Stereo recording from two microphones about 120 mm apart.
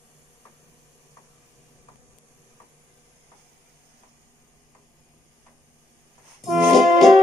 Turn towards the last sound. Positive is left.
turn(degrees=0)  # may be behind; listen again after turning